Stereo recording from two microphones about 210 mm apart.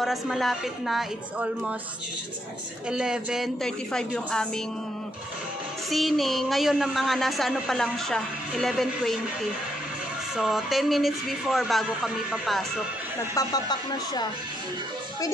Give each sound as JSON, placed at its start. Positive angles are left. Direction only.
{"t": 0.0, "sound": "speech", "side_deg": 0}
{"t": 2.9, "sound": "speech", "side_deg": -5}
{"t": 5.9, "sound": "speech", "side_deg": 0}
{"t": 13.3, "sound": "speech", "side_deg": 15}